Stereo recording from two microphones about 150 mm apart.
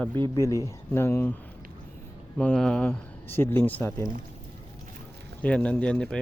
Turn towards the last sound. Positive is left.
turn(degrees=5)  # may be behind; listen again after turning